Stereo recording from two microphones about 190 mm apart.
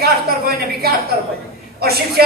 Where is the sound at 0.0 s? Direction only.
55° right (ahead or behind).